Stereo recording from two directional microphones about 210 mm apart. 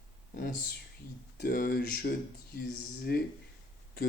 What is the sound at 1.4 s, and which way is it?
Speech, 45° left (ahead or behind).